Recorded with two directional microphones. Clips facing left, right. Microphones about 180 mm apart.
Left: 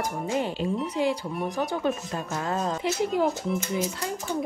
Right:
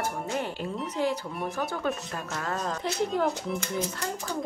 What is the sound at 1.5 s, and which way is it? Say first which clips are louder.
Speech: left 4 dB; 15° left (ahead or behind).